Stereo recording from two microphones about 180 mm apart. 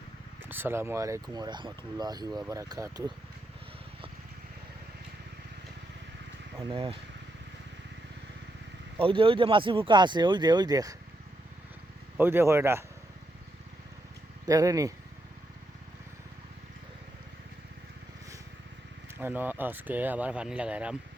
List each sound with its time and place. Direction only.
0.4 s speech: 10° right (ahead or behind)
6.6 s speech: 30° right (ahead or behind)
9.0 s speech: 30° right (ahead or behind)
12.1 s speech: 10° right (ahead or behind)
14.4 s speech: 20° right (ahead or behind)
19.2 s speech: 10° right (ahead or behind)